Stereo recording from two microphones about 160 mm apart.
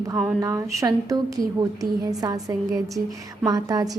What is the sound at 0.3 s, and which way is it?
A woman's voice, 20° right (ahead or behind).